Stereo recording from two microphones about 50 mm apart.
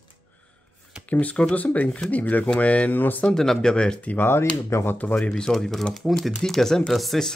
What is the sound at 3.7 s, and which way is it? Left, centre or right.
Speech, centre.